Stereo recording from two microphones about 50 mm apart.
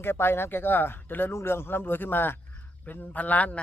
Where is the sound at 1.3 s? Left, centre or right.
Left.